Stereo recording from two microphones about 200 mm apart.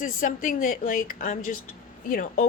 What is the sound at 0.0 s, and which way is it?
A woman's voice, 40° left (ahead or behind).